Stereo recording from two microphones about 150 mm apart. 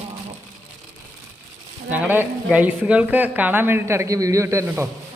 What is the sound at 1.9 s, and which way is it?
Speech, 10° right (ahead or behind).